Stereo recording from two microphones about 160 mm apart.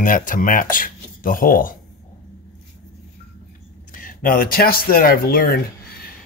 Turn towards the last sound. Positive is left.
turn(degrees=70)  # may be behind; listen again after turning